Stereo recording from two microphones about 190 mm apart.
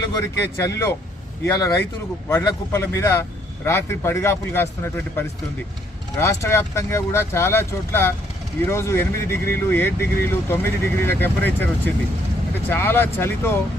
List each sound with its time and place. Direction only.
0.1 s speech: 15° left (ahead or behind)